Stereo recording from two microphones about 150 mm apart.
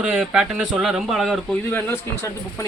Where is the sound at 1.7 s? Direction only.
15° left (ahead or behind).